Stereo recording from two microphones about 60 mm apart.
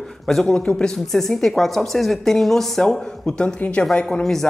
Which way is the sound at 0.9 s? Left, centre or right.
Centre.